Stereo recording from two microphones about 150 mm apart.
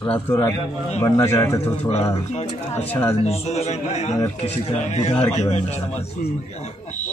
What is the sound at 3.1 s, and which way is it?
A man's voice, 45° left (ahead or behind).